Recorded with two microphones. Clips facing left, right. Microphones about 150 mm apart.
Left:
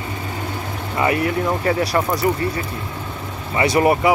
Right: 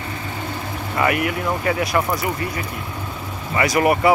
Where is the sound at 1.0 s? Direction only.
30° left (ahead or behind).